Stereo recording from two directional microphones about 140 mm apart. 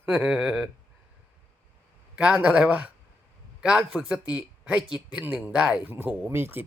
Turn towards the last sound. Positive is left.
turn(degrees=-15)  # may be behind; listen again after turning